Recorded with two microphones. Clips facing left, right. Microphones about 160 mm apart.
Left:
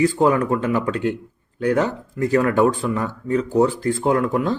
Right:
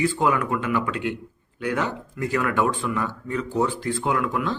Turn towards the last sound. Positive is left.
turn(degrees=40)  # may be behind; listen again after turning